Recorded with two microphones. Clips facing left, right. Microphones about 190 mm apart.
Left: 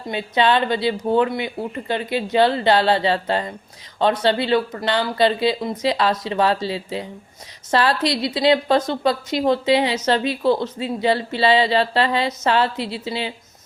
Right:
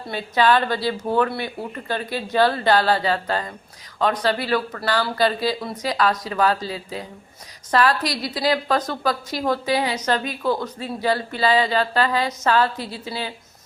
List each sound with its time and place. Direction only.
0.0 s speech: 20° left (ahead or behind)